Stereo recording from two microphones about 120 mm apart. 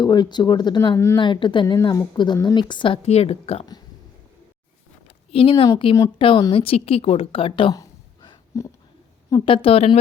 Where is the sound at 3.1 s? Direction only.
60° left (ahead or behind).